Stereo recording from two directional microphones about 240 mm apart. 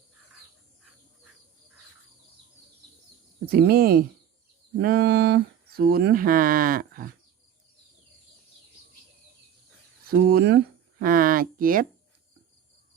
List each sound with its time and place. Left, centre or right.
3.4 s speech: right
10.1 s speech: right